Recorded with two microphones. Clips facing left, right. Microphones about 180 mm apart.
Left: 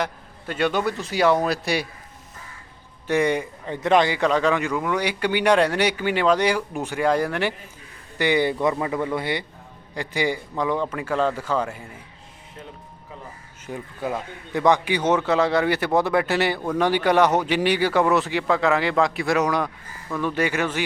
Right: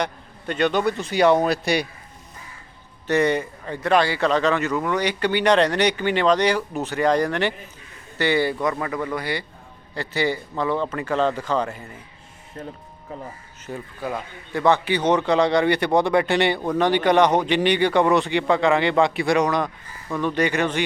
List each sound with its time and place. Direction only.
0.0 s speech: 5° left (ahead or behind)
3.1 s a man's voice: 10° left (ahead or behind)
13.7 s speech: 5° right (ahead or behind)
14.5 s a man's voice: 15° left (ahead or behind)